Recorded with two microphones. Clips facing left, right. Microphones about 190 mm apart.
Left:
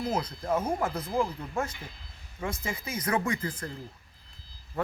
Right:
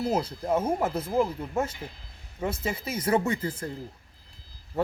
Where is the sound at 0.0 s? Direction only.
30° right (ahead or behind).